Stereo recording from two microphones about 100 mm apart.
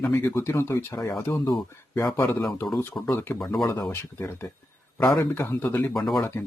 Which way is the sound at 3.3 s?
5° left (ahead or behind).